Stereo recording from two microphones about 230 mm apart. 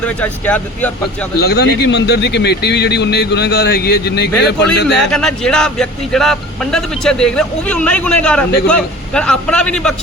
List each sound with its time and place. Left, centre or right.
0.0 s speech: centre
1.4 s speech: left
5.1 s a man's voice: centre